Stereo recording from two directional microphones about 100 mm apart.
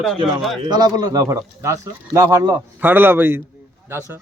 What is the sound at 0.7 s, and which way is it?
Speech, 40° right (ahead or behind).